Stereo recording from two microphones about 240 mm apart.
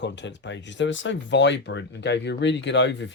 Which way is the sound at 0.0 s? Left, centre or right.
Left.